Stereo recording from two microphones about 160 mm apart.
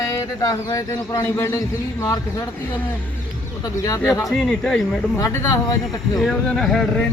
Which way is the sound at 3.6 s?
20° left (ahead or behind).